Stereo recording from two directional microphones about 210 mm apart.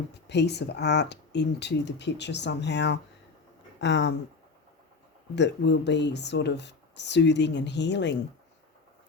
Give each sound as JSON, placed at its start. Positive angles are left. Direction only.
{"t": 0.3, "sound": "speech", "side_deg": 55}
{"t": 5.3, "sound": "speech", "side_deg": 55}